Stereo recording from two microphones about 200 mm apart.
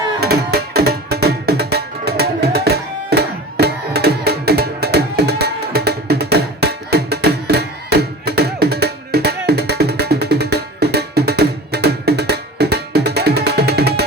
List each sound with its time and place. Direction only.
0.2 s music: 50° right (ahead or behind)